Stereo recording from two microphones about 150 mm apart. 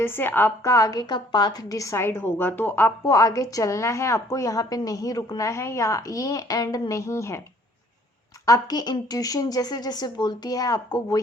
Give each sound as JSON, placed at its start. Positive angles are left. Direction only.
{"t": 0.0, "sound": "a woman's voice", "side_deg": 15}
{"t": 8.4, "sound": "a woman's voice", "side_deg": 25}